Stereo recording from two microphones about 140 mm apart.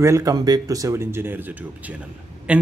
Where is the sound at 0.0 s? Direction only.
25° right (ahead or behind).